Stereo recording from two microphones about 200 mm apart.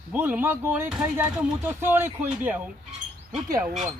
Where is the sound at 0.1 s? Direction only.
10° right (ahead or behind).